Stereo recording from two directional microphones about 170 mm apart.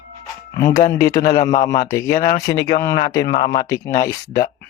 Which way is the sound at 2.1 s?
60° left (ahead or behind).